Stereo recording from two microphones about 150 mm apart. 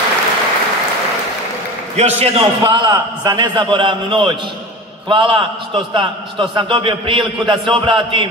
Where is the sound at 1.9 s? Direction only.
45° right (ahead or behind).